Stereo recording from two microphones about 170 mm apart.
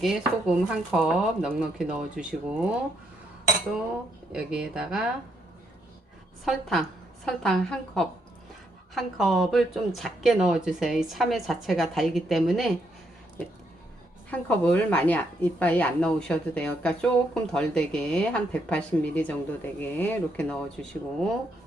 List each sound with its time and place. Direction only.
0.0 s a woman's voice: 5° right (ahead or behind)
4.3 s a woman's voice: 5° right (ahead or behind)
6.4 s a woman's voice: centre (ahead or behind)
14.3 s a woman's voice: 10° left (ahead or behind)